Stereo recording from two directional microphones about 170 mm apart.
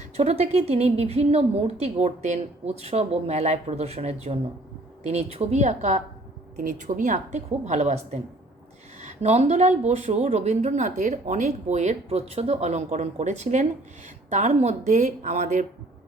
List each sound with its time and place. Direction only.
0.2 s a woman's voice: 40° right (ahead or behind)